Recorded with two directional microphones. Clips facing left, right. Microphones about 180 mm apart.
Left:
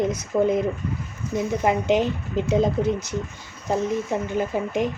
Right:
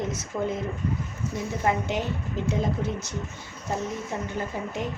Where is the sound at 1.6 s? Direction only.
20° left (ahead or behind).